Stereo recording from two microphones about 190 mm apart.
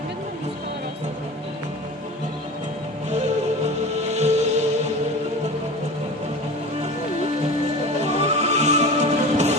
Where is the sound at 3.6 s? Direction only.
35° right (ahead or behind).